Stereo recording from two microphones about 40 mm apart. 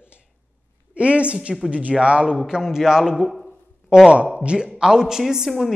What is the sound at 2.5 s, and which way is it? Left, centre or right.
Speech, centre.